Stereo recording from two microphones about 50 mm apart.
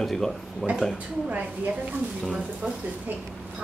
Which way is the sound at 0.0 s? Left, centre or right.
Centre.